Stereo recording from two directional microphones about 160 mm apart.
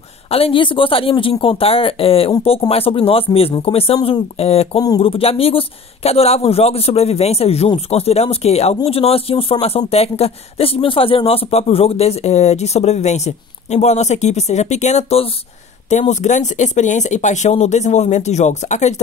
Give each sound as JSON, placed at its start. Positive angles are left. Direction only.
{"t": 0.3, "sound": "speech", "side_deg": 35}
{"t": 4.7, "sound": "speech", "side_deg": 25}